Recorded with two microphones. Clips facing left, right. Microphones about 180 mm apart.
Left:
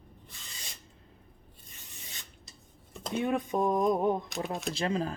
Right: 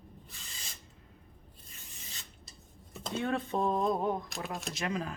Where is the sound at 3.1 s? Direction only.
15° left (ahead or behind).